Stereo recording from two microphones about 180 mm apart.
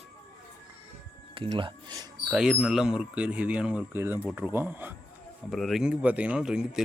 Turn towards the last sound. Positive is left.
turn(degrees=-5)  # may be behind; listen again after turning